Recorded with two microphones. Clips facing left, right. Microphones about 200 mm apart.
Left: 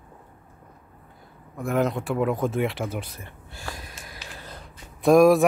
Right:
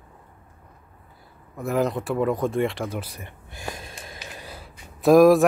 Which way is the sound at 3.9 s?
25° right (ahead or behind).